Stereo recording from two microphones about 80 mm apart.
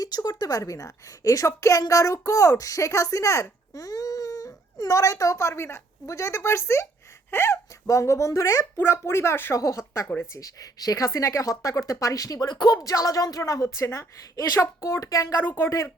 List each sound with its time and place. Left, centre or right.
0.0 s speech: left
9.6 s speech: left
14.3 s speech: left
15.4 s a woman's voice: left